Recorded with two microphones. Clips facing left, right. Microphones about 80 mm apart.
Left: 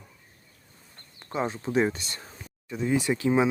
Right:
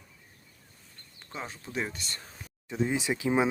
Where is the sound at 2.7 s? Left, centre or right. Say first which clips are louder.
Left 3 dB; right.